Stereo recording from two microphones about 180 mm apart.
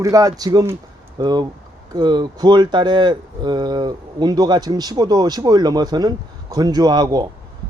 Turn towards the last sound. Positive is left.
turn(degrees=-20)  # may be behind; listen again after turning